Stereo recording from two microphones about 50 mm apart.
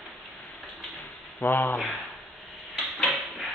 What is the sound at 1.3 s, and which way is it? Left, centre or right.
Speech, left.